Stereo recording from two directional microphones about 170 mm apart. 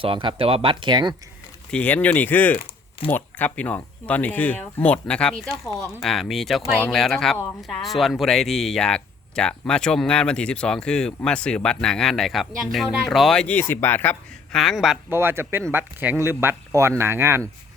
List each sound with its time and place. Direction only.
0.0 s speech: 30° right (ahead or behind)
1.7 s speech: 10° left (ahead or behind)
15.1 s speech: 15° right (ahead or behind)